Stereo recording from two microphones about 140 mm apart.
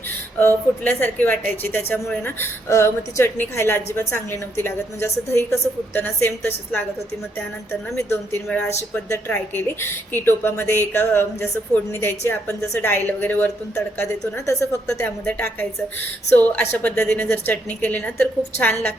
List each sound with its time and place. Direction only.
0.3 s a woman's voice: 15° left (ahead or behind)
7.9 s a woman's voice: 15° left (ahead or behind)